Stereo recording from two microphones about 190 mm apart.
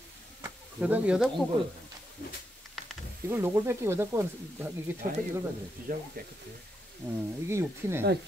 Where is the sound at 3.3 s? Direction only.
15° right (ahead or behind).